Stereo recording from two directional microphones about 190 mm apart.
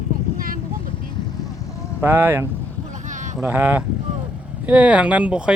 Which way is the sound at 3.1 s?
40° right (ahead or behind).